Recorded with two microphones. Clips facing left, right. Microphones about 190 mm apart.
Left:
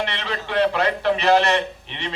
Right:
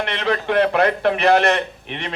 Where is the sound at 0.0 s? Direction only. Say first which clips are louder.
Right 5 dB; 55° right (ahead or behind).